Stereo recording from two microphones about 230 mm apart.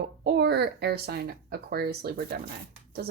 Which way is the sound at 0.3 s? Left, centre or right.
Right.